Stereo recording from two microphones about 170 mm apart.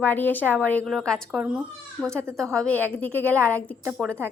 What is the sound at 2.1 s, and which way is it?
Speech, 15° right (ahead or behind).